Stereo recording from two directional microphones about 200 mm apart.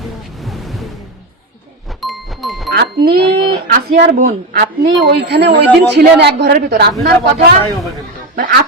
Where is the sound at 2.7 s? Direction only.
55° right (ahead or behind).